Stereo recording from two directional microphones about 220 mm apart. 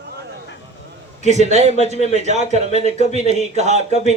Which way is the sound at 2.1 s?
30° right (ahead or behind).